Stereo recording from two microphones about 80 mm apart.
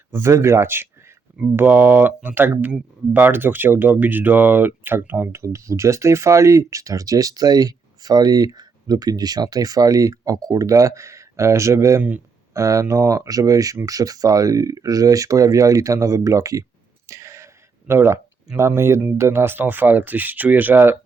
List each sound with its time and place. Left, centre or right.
0.1 s speech: right
17.1 s a sound: right
18.5 s speech: right